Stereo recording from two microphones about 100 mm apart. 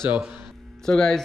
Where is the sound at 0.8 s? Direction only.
5° left (ahead or behind).